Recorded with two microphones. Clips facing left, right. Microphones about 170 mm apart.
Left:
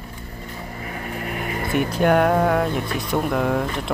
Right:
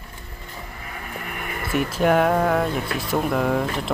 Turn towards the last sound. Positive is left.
turn(degrees=0)  # may be behind; listen again after turning